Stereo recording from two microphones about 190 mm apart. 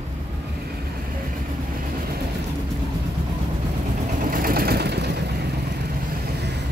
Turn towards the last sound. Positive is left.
turn(degrees=-60)  # may be behind; listen again after turning